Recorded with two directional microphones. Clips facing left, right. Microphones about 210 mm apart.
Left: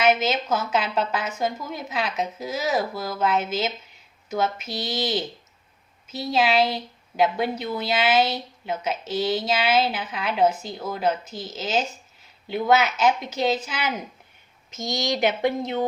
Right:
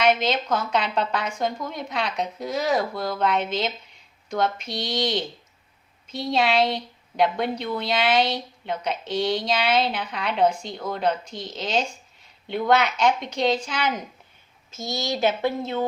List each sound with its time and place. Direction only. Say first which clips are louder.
0.0 s a woman's voice: even; 5° left (ahead or behind)